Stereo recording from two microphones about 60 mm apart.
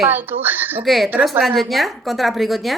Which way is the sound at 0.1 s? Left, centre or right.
Right.